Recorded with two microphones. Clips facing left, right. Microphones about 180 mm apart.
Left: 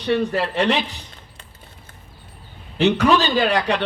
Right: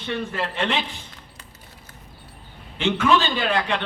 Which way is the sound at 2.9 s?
40° left (ahead or behind).